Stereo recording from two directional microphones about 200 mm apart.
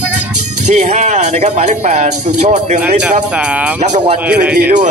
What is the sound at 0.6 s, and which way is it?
Speech, 35° right (ahead or behind).